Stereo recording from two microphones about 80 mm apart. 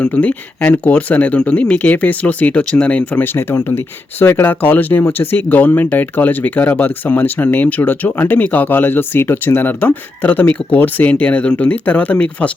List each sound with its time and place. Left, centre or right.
0.0 s speech: centre